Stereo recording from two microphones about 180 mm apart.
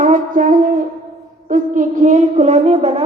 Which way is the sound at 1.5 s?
45° right (ahead or behind).